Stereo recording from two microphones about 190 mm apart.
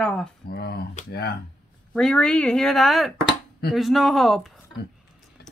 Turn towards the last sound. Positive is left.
turn(degrees=60)  # may be behind; listen again after turning